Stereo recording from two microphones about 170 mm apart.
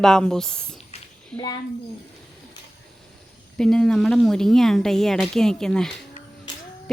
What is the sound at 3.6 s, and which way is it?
Speech, 5° left (ahead or behind).